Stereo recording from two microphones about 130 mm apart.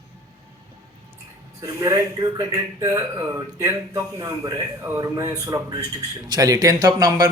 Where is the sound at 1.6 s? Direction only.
25° right (ahead or behind).